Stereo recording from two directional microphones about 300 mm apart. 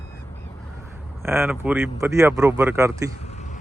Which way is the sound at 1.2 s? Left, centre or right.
Centre.